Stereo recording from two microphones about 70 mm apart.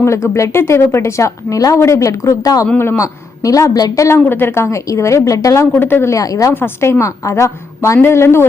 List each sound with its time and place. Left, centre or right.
0.0 s speech: left
2.7 s a woman's voice: left
3.0 s a woman's voice: left
4.3 s speech: left
5.7 s speech: left
6.1 s speech: left
6.5 s a woman's voice: left
7.0 s a woman's voice: left